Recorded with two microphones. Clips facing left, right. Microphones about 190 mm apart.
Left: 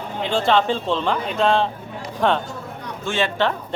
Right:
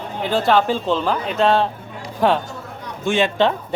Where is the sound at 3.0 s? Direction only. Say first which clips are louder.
Right 4 dB; 15° right (ahead or behind).